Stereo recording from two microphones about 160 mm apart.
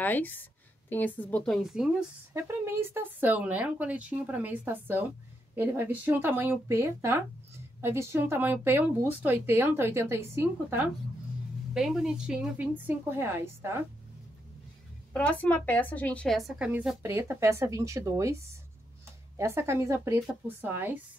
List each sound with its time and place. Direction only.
0.0 s a woman's voice: 10° left (ahead or behind)
2.3 s speech: 15° right (ahead or behind)
11.7 s speech: 5° right (ahead or behind)
15.1 s a woman's voice: 10° left (ahead or behind); by 21.0 s 10° right (ahead or behind)